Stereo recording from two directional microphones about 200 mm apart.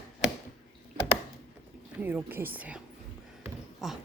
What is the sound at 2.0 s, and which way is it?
A woman's voice, 10° right (ahead or behind).